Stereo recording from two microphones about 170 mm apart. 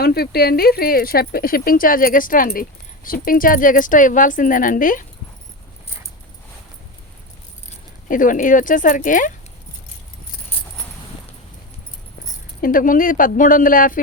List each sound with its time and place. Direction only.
0.0 s speech: 65° left (ahead or behind)
7.7 s speech: 50° left (ahead or behind)
12.6 s speech: 55° left (ahead or behind)